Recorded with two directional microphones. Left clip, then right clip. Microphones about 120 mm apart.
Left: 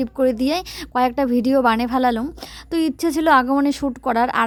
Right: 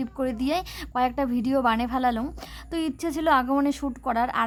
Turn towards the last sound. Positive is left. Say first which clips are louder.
# left 6 dB
turn(degrees=55)  # may be behind; listen again after turning